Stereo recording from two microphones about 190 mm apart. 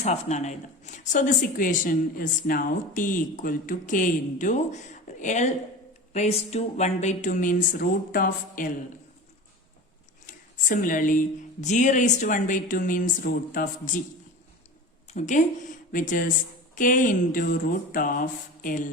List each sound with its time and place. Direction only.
0.0 s a woman's voice: 35° left (ahead or behind)
10.2 s a sound: 45° left (ahead or behind)
11.6 s a woman's voice: 40° left (ahead or behind)
15.1 s a woman's voice: 40° left (ahead or behind)